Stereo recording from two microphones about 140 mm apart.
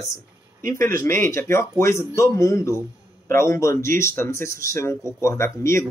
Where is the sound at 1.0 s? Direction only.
15° left (ahead or behind).